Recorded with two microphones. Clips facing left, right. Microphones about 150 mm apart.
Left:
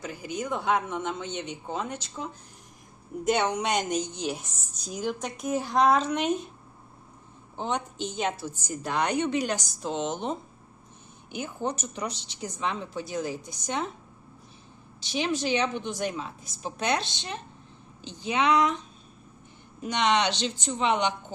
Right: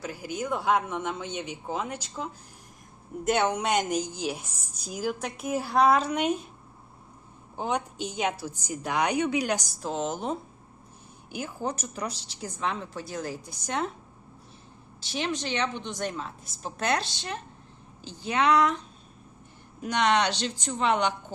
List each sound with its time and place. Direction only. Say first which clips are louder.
0.0 s a woman's voice: even; 5° right (ahead or behind)
7.5 s a woman's voice: right 1 dB; 10° right (ahead or behind)
15.1 s a woman's voice: left 3 dB; 5° left (ahead or behind)
19.8 s a woman's voice: even; 5° right (ahead or behind)